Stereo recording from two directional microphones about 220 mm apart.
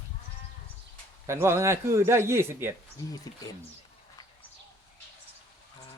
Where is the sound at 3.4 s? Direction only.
15° left (ahead or behind).